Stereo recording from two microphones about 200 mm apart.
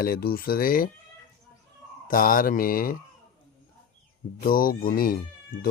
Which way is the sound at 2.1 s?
45° left (ahead or behind).